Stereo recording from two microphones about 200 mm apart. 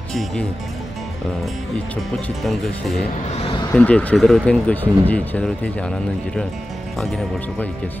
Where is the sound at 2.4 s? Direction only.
Centre (ahead or behind).